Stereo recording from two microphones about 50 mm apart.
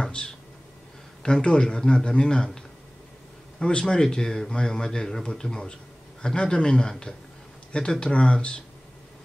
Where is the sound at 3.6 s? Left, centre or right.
Centre.